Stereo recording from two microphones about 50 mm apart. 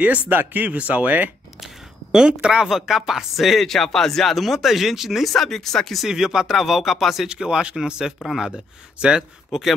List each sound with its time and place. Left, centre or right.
0.0 s speech: right
2.1 s speech: centre
2.6 s speech: centre
5.3 s speech: centre
5.9 s speech: centre
7.2 s speech: centre